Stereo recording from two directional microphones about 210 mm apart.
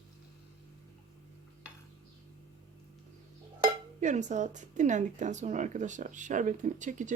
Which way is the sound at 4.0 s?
35° right (ahead or behind).